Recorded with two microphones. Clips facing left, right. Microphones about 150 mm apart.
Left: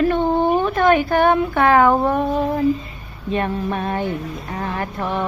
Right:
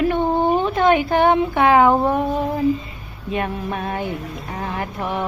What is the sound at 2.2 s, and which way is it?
Speech, centre (ahead or behind).